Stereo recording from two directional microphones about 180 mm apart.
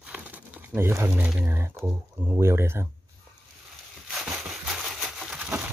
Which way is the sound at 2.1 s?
15° right (ahead or behind).